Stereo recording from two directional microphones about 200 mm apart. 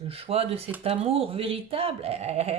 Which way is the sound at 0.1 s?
30° right (ahead or behind).